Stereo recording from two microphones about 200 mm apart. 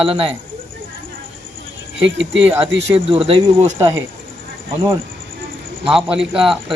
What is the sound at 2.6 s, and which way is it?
Speech, 30° right (ahead or behind).